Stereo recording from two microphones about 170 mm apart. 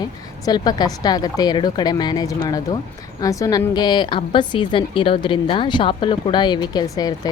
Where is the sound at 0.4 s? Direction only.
25° left (ahead or behind).